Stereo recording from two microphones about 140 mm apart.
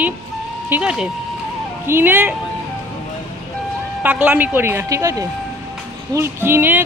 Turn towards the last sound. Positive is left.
turn(degrees=-15)  # may be behind; listen again after turning